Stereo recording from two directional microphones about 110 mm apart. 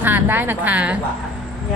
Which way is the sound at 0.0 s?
20° right (ahead or behind).